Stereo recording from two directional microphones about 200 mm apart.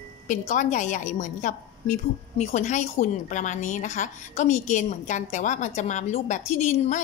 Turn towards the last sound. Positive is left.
turn(degrees=35)  # may be behind; listen again after turning